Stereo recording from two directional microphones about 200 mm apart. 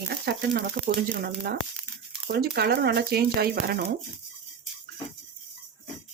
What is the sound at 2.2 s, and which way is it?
Speech, 50° right (ahead or behind).